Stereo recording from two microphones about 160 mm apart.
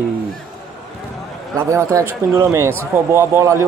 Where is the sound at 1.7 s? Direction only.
20° right (ahead or behind).